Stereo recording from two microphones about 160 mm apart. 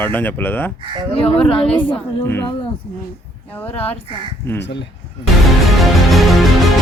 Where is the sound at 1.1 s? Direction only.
35° left (ahead or behind).